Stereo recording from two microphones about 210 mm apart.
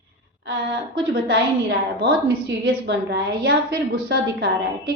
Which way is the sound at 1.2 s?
50° right (ahead or behind).